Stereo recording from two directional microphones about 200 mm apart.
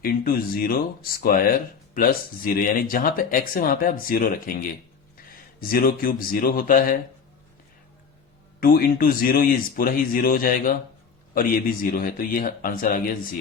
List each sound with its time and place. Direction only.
0.0 s speech: 45° left (ahead or behind)
8.6 s speech: 45° left (ahead or behind)